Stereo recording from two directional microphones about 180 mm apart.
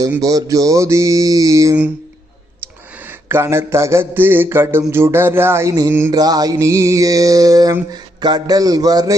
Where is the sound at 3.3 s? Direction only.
15° right (ahead or behind).